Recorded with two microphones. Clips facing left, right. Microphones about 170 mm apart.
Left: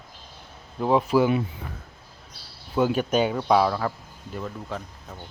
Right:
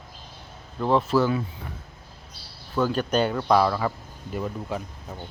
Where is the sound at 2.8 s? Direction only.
10° left (ahead or behind).